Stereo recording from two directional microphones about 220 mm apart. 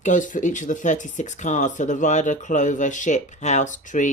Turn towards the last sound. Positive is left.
turn(degrees=35)  # may be behind; listen again after turning